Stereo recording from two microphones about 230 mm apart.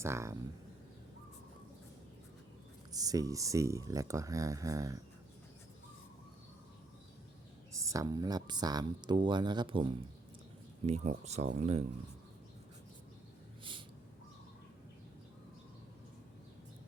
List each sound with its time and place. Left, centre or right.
0.0 s speech: centre
2.9 s speech: centre
7.7 s speech: centre